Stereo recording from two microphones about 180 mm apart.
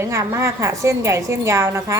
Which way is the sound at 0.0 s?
15° right (ahead or behind).